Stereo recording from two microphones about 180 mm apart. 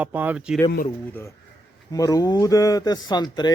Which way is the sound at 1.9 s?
20° left (ahead or behind).